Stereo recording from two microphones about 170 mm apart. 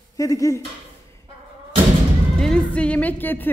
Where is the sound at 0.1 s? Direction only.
20° left (ahead or behind).